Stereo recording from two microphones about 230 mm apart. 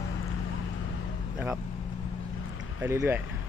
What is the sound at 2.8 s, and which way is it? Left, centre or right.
Speech, centre.